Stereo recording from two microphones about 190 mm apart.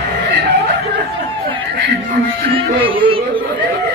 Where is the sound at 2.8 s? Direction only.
25° right (ahead or behind).